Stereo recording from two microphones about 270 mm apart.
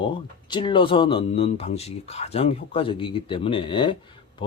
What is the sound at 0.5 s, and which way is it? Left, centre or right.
Speech, centre.